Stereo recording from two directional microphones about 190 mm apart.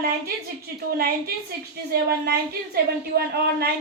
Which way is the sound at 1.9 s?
55° right (ahead or behind).